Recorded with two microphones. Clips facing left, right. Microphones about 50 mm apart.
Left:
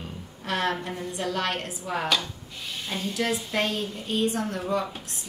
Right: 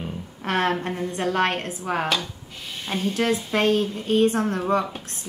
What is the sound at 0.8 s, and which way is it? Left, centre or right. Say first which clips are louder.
A woman's voice: right 5 dB; right.